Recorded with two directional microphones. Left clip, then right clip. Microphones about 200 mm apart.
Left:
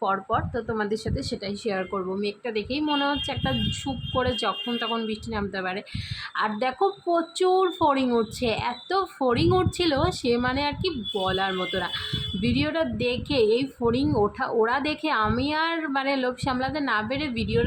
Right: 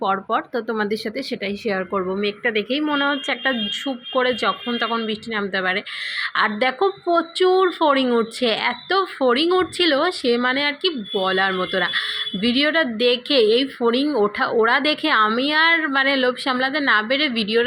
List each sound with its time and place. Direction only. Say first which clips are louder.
0.0 s speech: right 4 dB; 15° right (ahead or behind)